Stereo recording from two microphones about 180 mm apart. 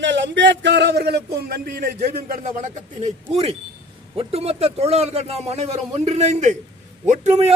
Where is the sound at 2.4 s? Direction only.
40° right (ahead or behind).